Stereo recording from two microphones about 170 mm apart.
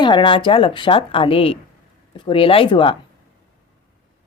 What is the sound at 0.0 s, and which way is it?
A woman's voice, 30° left (ahead or behind).